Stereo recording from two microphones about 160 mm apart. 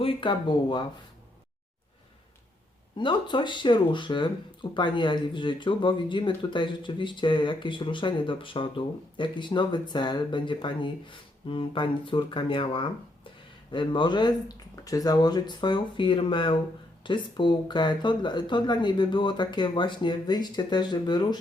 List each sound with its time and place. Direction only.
0.0 s speech: 30° left (ahead or behind)
3.0 s speech: 30° left (ahead or behind)